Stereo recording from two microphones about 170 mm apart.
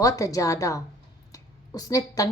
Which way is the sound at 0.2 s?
20° left (ahead or behind).